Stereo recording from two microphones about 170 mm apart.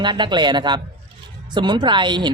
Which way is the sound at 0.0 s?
25° right (ahead or behind).